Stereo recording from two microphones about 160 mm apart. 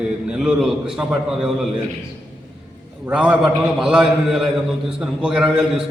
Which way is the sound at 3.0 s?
5° right (ahead or behind).